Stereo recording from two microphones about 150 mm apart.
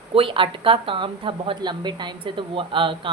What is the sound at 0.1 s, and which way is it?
Speech, 35° right (ahead or behind).